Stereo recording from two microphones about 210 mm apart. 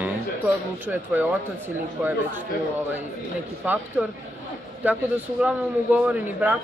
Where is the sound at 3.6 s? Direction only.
10° right (ahead or behind).